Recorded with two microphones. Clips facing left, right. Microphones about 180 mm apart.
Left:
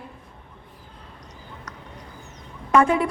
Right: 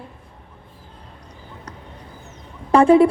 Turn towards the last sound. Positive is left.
turn(degrees=-30)  # may be behind; listen again after turning